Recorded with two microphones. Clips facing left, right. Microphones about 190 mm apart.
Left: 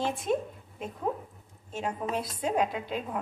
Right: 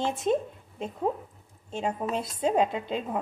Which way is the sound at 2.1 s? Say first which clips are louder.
Right 4 dB; 25° right (ahead or behind).